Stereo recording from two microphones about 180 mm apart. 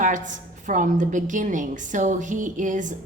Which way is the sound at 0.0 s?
45° right (ahead or behind).